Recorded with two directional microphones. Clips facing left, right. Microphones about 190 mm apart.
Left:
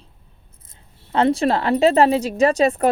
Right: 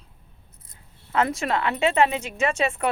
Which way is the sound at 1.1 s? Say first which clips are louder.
Left 6 dB; 30° left (ahead or behind).